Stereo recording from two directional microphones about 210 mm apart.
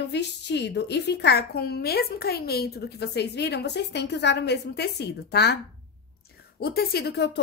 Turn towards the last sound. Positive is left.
turn(degrees=50)  # may be behind; listen again after turning